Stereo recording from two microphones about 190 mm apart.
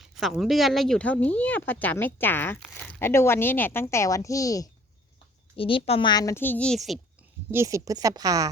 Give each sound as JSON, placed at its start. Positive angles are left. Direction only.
{"t": 0.2, "sound": "speech", "side_deg": 0}
{"t": 5.5, "sound": "speech", "side_deg": 30}
{"t": 7.5, "sound": "speech", "side_deg": -15}